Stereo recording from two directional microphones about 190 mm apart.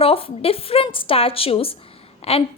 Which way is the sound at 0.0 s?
30° left (ahead or behind).